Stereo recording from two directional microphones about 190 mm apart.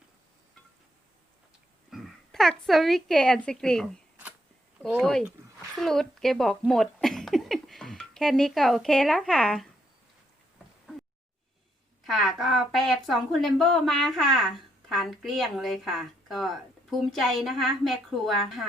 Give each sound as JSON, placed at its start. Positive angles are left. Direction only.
{"t": 1.9, "sound": "a woman's voice", "side_deg": 0}
{"t": 5.7, "sound": "speech", "side_deg": 0}
{"t": 12.0, "sound": "speech", "side_deg": 0}